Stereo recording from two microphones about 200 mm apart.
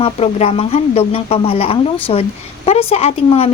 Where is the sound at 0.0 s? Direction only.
30° left (ahead or behind).